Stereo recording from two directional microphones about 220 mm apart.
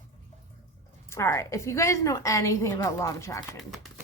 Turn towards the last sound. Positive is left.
turn(degrees=15)  # may be behind; listen again after turning